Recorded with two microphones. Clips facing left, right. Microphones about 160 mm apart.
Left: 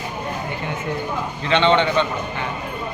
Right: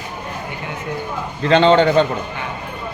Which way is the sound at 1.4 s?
40° right (ahead or behind).